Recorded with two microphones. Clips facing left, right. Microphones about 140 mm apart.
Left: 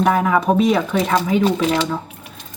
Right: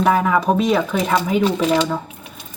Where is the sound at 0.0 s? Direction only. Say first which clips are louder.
Even; centre (ahead or behind).